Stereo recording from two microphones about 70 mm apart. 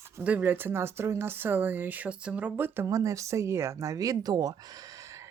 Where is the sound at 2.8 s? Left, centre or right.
Right.